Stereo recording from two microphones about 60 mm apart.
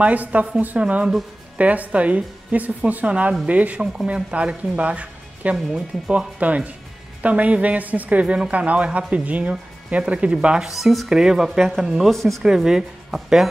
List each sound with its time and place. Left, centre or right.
0.0 s speech: right
5.7 s speech: centre
6.1 s speech: right
10.7 s speech: centre
12.1 s speech: centre
12.4 s speech: centre